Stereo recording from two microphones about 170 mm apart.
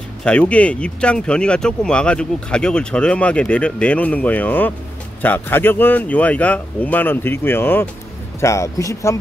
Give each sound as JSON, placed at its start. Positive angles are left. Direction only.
{"t": 0.2, "sound": "speech", "side_deg": 5}